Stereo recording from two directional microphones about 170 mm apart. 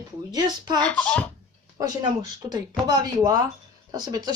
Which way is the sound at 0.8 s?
5° left (ahead or behind).